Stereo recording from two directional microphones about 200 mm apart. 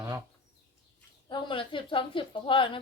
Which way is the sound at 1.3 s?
25° left (ahead or behind).